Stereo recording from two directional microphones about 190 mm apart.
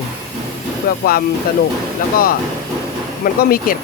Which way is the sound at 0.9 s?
50° left (ahead or behind).